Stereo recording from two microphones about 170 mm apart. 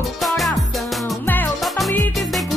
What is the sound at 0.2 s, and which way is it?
Music, centre (ahead or behind).